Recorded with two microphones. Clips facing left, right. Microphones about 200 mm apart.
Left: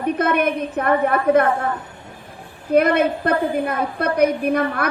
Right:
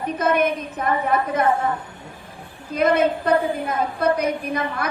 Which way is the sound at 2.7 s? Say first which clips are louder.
Left 2 dB; 60° left (ahead or behind).